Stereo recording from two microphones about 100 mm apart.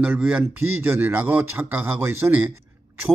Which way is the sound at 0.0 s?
15° right (ahead or behind).